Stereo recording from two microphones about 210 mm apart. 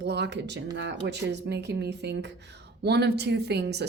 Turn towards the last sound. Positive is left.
turn(degrees=-55)  # may be behind; listen again after turning